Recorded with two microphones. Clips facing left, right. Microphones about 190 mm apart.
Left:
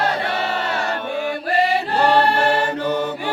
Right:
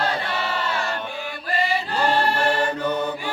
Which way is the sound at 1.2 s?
65° left (ahead or behind).